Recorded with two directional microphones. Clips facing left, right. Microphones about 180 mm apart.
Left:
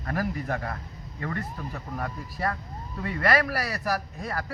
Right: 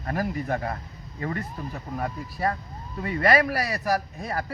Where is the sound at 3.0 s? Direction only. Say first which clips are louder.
Right 3 dB; 15° right (ahead or behind).